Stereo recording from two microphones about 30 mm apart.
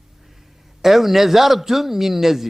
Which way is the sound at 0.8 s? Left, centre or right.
Centre.